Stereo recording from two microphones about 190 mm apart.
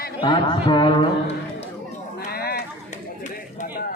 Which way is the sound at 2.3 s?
55° left (ahead or behind).